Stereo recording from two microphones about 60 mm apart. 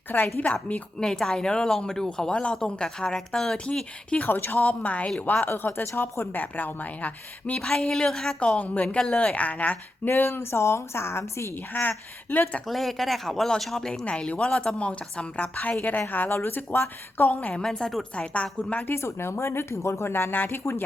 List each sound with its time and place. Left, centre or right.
0.3 s a woman's voice: left
0.9 s speech: centre
4.3 s a woman's voice: left
4.6 s a woman's voice: left
7.7 s speech: centre
8.4 s a woman's voice: left
10.1 s speech: left
11.5 s a woman's voice: left
12.6 s a woman's voice: centre
15.8 s a woman's voice: left
17.6 s a woman's voice: centre
18.9 s speech: left